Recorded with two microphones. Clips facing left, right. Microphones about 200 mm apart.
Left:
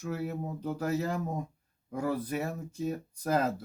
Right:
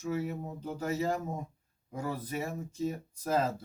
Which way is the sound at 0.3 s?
65° left (ahead or behind).